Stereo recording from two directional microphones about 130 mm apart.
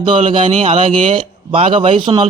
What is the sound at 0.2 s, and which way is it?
Speech, 45° right (ahead or behind).